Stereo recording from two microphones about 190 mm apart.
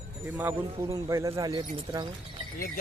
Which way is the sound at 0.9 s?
15° right (ahead or behind).